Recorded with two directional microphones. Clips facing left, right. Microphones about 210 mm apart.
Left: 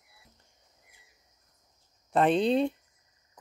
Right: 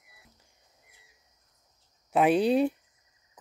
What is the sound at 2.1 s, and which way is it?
Speech, 10° right (ahead or behind).